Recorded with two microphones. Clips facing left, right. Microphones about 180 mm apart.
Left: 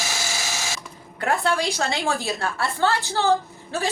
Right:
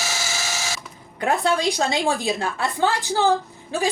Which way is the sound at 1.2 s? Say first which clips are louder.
Right 2 dB; 15° right (ahead or behind).